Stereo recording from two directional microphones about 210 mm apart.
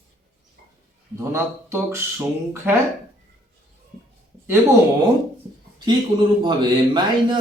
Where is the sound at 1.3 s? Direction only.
10° right (ahead or behind).